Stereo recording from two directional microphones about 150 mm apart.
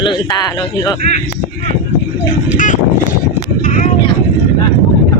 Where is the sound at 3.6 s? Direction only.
50° left (ahead or behind).